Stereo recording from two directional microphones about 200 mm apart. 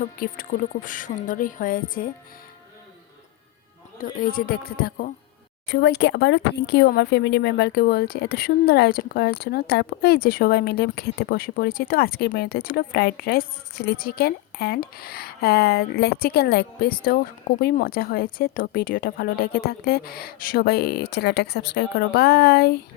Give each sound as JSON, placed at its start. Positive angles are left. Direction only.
{"t": 0.2, "sound": "speech", "side_deg": 45}
{"t": 4.0, "sound": "speech", "side_deg": 45}